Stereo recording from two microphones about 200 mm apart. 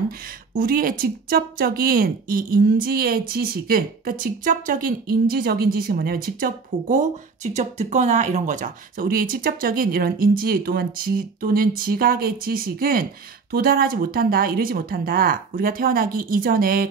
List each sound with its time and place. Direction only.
0.6 s a woman's voice: 45° right (ahead or behind)